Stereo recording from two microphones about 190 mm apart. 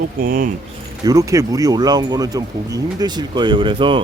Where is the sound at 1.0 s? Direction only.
15° right (ahead or behind).